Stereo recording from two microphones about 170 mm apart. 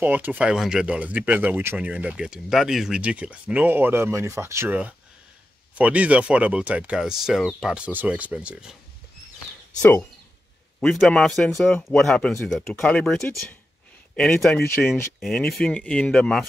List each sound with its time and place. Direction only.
0.0 s speech: 10° right (ahead or behind)
9.8 s speech: 10° left (ahead or behind)